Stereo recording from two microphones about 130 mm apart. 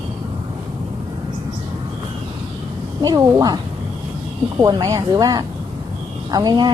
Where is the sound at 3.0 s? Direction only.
25° right (ahead or behind).